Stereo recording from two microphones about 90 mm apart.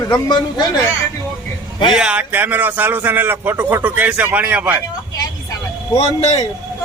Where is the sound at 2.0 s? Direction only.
15° right (ahead or behind).